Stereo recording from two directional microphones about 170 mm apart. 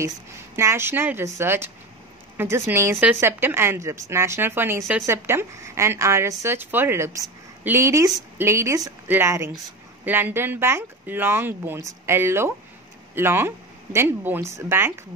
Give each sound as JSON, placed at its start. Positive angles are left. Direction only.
{"t": 0.6, "sound": "a woman's voice", "side_deg": -15}